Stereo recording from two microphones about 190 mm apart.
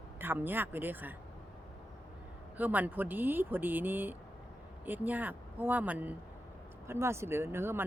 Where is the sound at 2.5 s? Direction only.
10° right (ahead or behind).